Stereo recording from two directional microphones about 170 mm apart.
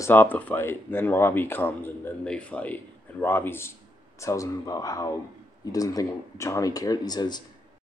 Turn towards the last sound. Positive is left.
turn(degrees=25)  # may be behind; listen again after turning